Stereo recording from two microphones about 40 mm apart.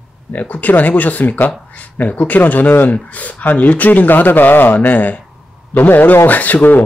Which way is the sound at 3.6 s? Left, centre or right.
Left.